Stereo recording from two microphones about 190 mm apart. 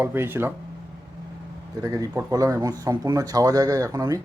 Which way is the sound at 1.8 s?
20° right (ahead or behind).